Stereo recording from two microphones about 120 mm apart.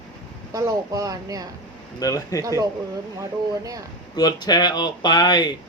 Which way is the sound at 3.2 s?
30° right (ahead or behind).